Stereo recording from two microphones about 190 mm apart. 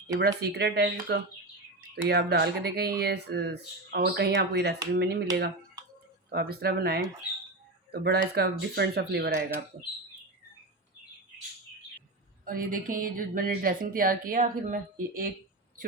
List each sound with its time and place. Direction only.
0.1 s speech: 55° right (ahead or behind)
6.3 s speech: 55° right (ahead or behind)
12.5 s speech: 45° right (ahead or behind)